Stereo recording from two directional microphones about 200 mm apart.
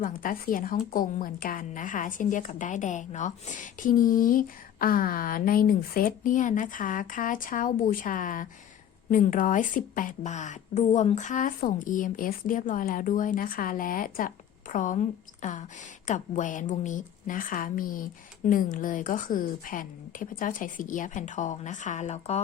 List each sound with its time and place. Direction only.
0.0 s a woman's voice: 45° left (ahead or behind)